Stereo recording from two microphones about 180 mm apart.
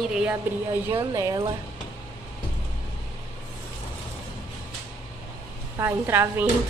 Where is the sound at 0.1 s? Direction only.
5° right (ahead or behind).